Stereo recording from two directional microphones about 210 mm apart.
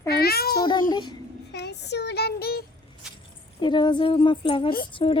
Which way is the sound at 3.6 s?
20° left (ahead or behind).